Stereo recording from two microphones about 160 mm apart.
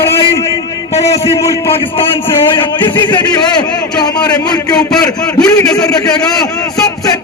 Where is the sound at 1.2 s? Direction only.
20° left (ahead or behind).